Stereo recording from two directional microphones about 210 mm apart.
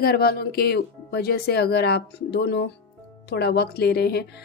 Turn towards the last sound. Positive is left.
turn(degrees=50)  # may be behind; listen again after turning